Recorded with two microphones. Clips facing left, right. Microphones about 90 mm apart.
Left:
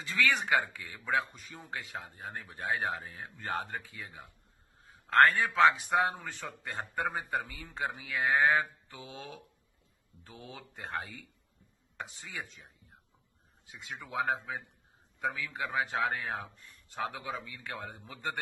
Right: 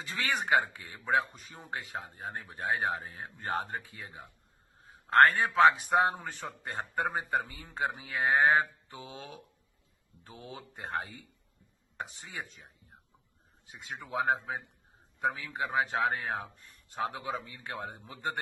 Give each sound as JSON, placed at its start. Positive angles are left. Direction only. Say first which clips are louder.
{"t": 0.0, "sound": "a man's voice", "louder": "left 3 dB", "side_deg": -30}